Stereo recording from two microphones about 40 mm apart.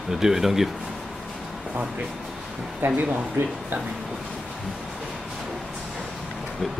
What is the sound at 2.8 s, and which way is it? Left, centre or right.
Speech, right.